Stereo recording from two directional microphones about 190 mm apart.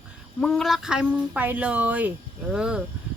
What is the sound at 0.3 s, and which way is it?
Speech, 5° left (ahead or behind).